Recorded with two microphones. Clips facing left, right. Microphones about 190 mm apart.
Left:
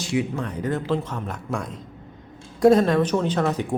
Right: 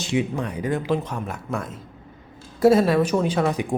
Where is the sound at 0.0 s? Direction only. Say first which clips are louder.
Right 1 dB; 20° right (ahead or behind).